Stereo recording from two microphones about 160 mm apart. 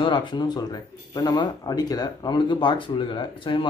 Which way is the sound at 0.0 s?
30° left (ahead or behind).